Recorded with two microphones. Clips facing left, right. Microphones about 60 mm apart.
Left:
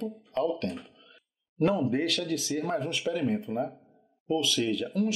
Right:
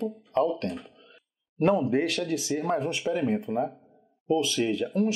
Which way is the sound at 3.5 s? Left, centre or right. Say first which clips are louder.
Right 3 dB; centre.